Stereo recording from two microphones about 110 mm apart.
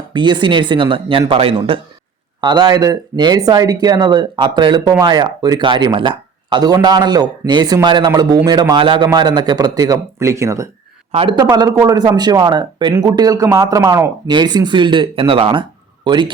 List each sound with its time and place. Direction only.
0.1 s speech: 45° right (ahead or behind)
2.4 s speech: 40° right (ahead or behind)
11.1 s speech: 55° right (ahead or behind)
11.5 s speech: 35° right (ahead or behind)